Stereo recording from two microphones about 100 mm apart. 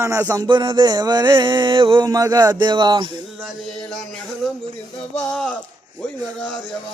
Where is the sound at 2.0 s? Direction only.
40° right (ahead or behind).